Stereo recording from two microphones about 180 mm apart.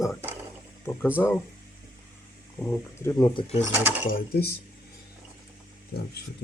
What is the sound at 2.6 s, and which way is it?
Speech, 15° left (ahead or behind).